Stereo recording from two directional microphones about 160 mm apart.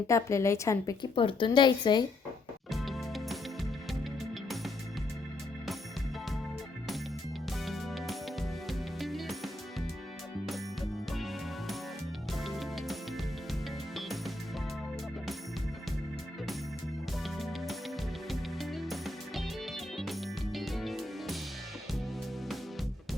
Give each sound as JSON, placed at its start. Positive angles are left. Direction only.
{"t": 0.1, "sound": "a woman's voice", "side_deg": 20}
{"t": 1.1, "sound": "a woman's voice", "side_deg": 35}
{"t": 2.7, "sound": "music", "side_deg": 0}
{"t": 7.6, "sound": "music", "side_deg": 0}
{"t": 11.1, "sound": "music", "side_deg": 0}
{"t": 17.2, "sound": "music", "side_deg": 0}